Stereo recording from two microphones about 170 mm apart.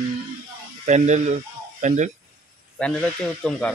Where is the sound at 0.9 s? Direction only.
45° right (ahead or behind).